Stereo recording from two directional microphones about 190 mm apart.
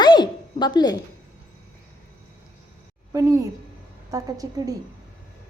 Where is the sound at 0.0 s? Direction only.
25° left (ahead or behind).